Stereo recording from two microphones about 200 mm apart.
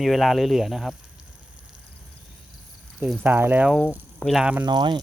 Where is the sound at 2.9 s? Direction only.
5° right (ahead or behind).